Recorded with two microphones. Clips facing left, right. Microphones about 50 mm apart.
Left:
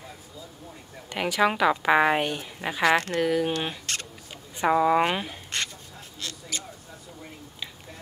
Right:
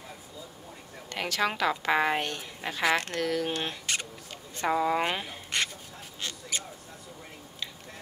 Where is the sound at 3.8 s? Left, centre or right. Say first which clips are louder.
Right 1 dB; centre.